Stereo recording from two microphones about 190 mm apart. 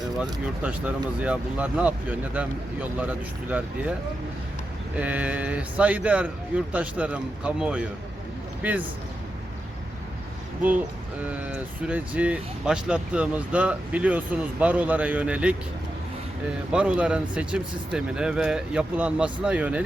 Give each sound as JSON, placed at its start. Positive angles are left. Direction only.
{"t": 0.0, "sound": "speech", "side_deg": -5}
{"t": 4.9, "sound": "speech", "side_deg": -10}
{"t": 11.3, "sound": "speech", "side_deg": -5}
{"t": 16.7, "sound": "speech", "side_deg": -5}